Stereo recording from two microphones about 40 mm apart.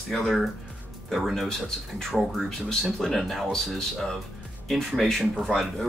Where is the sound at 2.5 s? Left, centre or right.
Centre.